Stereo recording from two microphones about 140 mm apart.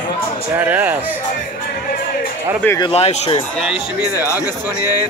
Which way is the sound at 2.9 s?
50° left (ahead or behind).